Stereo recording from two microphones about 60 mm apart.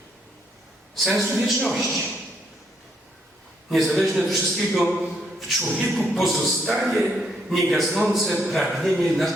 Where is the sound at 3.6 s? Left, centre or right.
Centre.